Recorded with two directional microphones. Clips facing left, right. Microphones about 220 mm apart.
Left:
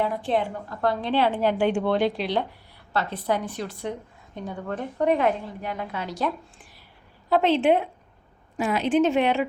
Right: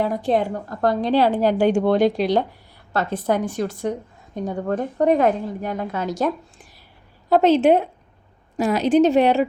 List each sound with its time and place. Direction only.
0.0 s a woman's voice: 40° right (ahead or behind)